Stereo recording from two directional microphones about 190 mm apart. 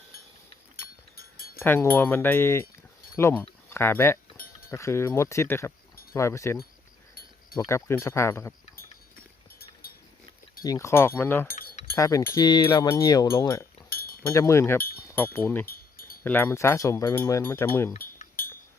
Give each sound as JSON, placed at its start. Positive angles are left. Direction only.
{"t": 1.1, "sound": "a sound", "side_deg": 50}
{"t": 1.5, "sound": "speech", "side_deg": 10}
{"t": 10.6, "sound": "speech", "side_deg": 15}
{"t": 11.4, "sound": "chink", "side_deg": 50}
{"t": 11.9, "sound": "speech", "side_deg": 15}
{"t": 13.9, "sound": "chink", "side_deg": 50}
{"t": 14.2, "sound": "speech", "side_deg": 15}
{"t": 15.6, "sound": "a sound", "side_deg": 50}
{"t": 16.2, "sound": "speech", "side_deg": 10}
{"t": 18.0, "sound": "cutlery", "side_deg": 50}